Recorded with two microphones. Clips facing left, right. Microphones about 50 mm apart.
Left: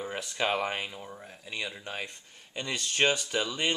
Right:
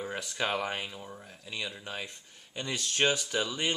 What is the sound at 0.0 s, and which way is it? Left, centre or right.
Speech, centre.